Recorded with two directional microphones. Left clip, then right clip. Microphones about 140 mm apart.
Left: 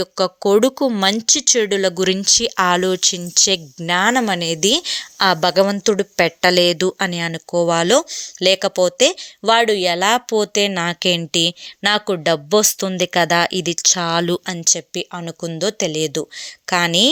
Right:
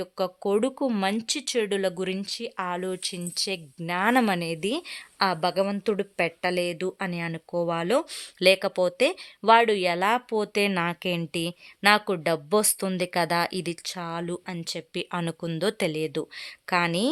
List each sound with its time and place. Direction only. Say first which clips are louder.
0.0 s a woman's voice: left 10 dB; 35° left (ahead or behind)
2.2 s a woman's voice: left 16 dB; 45° left (ahead or behind)
7.1 s speech: left 10 dB; 25° left (ahead or behind)
8.1 s speech: left 7 dB; centre (ahead or behind)
8.4 s speech: left 6 dB; 20° left (ahead or behind); by 14.6 s 40° left (ahead or behind)
14.6 s speech: left 13 dB; 25° left (ahead or behind)
15.1 s speech: left 4 dB; centre (ahead or behind)
15.9 s speech: left 8 dB; 25° left (ahead or behind)